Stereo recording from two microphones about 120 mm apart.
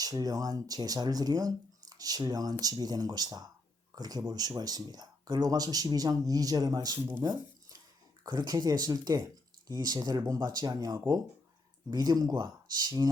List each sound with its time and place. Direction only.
0.0 s speech: 30° right (ahead or behind)
7.2 s a sound: 35° right (ahead or behind)
8.2 s speech: 35° right (ahead or behind)